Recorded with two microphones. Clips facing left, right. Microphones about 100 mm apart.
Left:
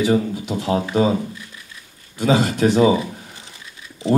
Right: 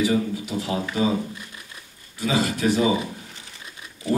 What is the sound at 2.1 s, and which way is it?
Speech, 25° left (ahead or behind).